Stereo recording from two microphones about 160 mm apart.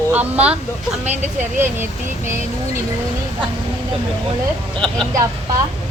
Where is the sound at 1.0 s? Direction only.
45° right (ahead or behind).